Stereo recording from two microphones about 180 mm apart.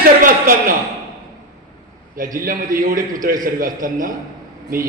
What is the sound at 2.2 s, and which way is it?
A man's voice, 50° right (ahead or behind).